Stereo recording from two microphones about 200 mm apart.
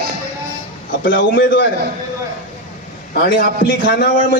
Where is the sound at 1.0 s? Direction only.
45° left (ahead or behind).